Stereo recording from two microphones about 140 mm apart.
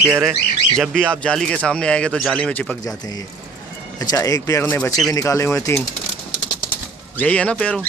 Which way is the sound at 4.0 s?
25° left (ahead or behind).